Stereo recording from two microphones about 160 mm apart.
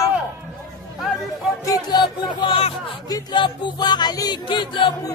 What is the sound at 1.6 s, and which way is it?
Music, 25° left (ahead or behind).